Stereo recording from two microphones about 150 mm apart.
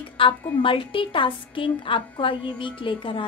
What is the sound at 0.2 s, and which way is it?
A woman's voice, 35° left (ahead or behind).